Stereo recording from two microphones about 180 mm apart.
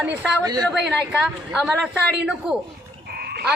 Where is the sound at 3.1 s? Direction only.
60° right (ahead or behind).